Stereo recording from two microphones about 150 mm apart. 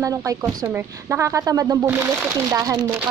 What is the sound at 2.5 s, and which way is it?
Speech, 25° right (ahead or behind).